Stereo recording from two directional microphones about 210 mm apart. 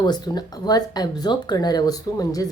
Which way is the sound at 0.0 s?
20° left (ahead or behind).